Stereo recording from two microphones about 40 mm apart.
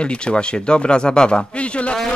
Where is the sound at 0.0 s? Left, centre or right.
Left.